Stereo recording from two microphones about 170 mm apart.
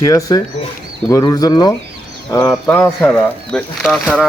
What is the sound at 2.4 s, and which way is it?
Speech, 10° left (ahead or behind).